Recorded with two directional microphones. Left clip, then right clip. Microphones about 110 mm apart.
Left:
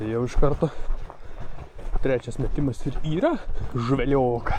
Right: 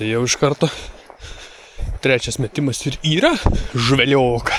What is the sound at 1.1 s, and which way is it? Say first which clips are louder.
Snort: right 3 dB; 50° left (ahead or behind).